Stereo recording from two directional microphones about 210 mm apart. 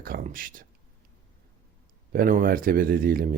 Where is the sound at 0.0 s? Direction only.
40° right (ahead or behind).